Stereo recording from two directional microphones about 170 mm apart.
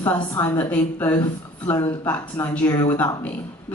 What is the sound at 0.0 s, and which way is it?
A woman's voice, 15° left (ahead or behind).